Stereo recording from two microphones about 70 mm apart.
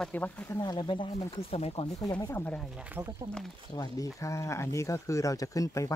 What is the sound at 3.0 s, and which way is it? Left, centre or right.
Speech, right.